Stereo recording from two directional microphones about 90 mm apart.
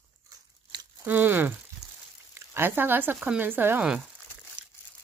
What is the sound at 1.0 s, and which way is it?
Speech, 20° right (ahead or behind).